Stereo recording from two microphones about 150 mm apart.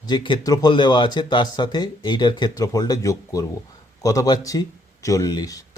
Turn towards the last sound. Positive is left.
turn(degrees=25)  # may be behind; listen again after turning